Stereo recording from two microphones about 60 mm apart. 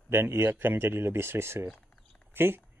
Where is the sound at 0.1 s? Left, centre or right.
Right.